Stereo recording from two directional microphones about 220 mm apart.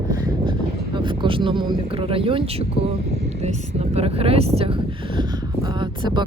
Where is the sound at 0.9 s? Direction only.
20° right (ahead or behind).